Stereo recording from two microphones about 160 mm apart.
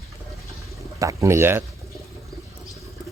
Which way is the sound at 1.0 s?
20° right (ahead or behind).